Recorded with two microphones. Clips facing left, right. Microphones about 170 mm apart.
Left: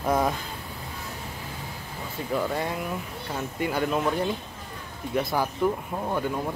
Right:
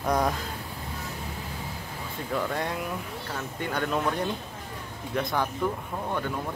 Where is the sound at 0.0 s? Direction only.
5° left (ahead or behind).